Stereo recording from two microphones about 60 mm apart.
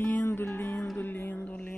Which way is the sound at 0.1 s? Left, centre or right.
Left.